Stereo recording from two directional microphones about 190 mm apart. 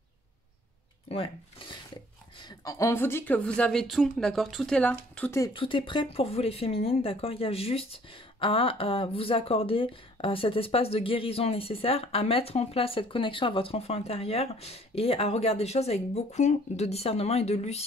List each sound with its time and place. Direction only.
1.0 s speech: 30° left (ahead or behind)
2.6 s speech: 15° left (ahead or behind)
5.4 s speech: 25° left (ahead or behind)